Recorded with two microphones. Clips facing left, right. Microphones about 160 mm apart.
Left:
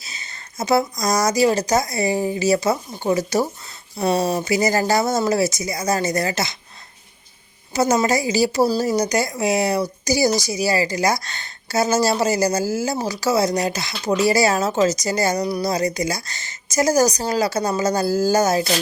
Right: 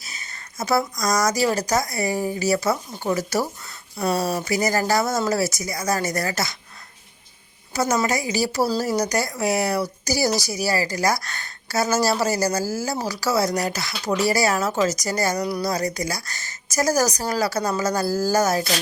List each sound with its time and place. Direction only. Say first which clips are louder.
0.0 s speech: left 1 dB; 25° left (ahead or behind)
7.7 s speech: left 4 dB; 25° left (ahead or behind)